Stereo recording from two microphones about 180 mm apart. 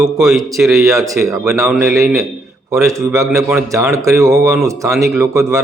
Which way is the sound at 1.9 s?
15° right (ahead or behind).